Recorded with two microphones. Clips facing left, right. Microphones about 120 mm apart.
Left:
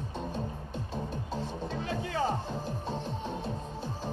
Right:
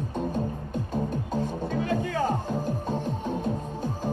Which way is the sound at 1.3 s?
45° right (ahead or behind).